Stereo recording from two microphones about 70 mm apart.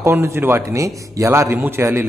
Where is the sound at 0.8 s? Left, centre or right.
Right.